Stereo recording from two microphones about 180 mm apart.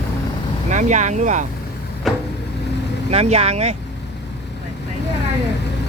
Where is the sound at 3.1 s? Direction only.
35° right (ahead or behind).